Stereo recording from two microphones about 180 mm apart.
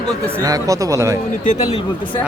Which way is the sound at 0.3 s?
20° right (ahead or behind).